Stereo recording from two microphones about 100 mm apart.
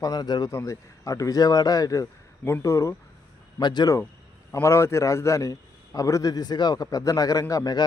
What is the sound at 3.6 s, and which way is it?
Speech, 45° left (ahead or behind).